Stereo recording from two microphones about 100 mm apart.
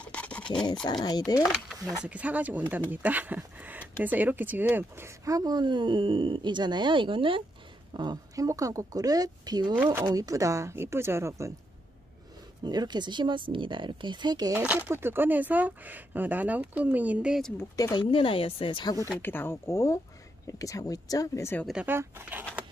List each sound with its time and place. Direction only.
0.0 s a sound: 15° left (ahead or behind)
0.8 s speech: 45° left (ahead or behind)
2.0 s speech: 15° right (ahead or behind); by 8.2 s 50° right (ahead or behind)
8.4 s speech: 35° right (ahead or behind)
12.6 s speech: 45° right (ahead or behind)
14.6 s speech: 15° right (ahead or behind)
17.7 s speech: 40° left (ahead or behind)
18.1 s speech: 65° left (ahead or behind)
19.2 s speech: 20° left (ahead or behind); by 21.5 s 35° left (ahead or behind)
21.8 s speech: 20° right (ahead or behind)